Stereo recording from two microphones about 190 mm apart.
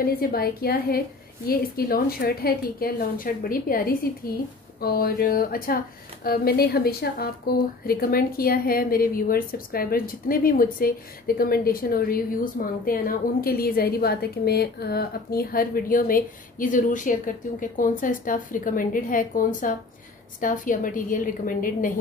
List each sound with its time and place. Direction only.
0.0 s a woman's voice: 50° left (ahead or behind)